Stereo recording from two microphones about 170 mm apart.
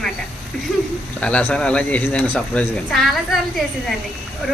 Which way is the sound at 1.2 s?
10° left (ahead or behind).